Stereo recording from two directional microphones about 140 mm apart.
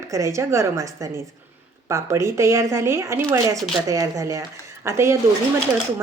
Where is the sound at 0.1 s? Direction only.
20° right (ahead or behind).